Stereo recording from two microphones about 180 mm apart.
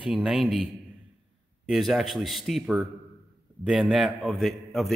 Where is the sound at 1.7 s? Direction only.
Centre (ahead or behind).